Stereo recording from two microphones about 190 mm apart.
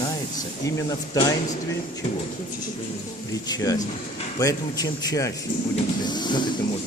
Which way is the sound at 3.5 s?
20° left (ahead or behind).